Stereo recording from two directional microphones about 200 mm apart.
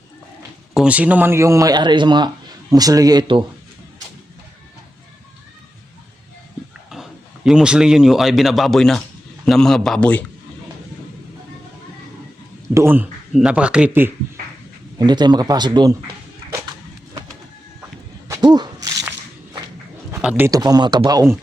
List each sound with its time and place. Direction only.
0.7 s speech: 5° right (ahead or behind); by 3.4 s 25° right (ahead or behind)
6.9 s speech: centre (ahead or behind)
12.7 s speech: 10° right (ahead or behind)
14.9 s speech: 20° right (ahead or behind)
18.3 s a sound: 20° right (ahead or behind)
20.1 s speech: 10° right (ahead or behind)